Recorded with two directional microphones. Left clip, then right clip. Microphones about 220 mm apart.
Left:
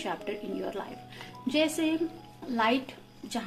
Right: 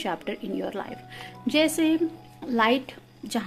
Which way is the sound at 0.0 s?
45° right (ahead or behind).